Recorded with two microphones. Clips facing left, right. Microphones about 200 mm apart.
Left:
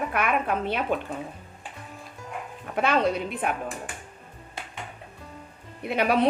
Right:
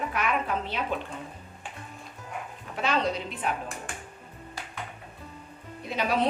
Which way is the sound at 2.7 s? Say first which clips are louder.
Left 4 dB; 55° left (ahead or behind).